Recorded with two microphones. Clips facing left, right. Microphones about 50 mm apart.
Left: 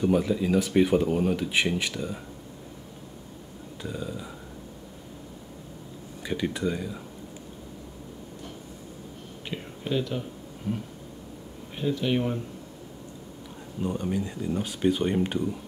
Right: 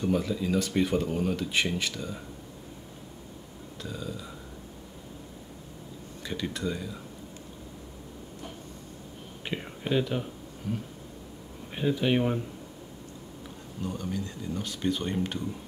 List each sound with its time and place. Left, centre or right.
0.0 s speech: centre
3.8 s speech: centre
6.2 s speech: centre
9.5 s a sound: centre
10.7 s speech: centre
11.7 s speech: centre
13.8 s speech: left